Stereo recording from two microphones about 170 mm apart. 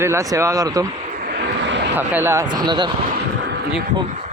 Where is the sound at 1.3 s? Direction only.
75° right (ahead or behind).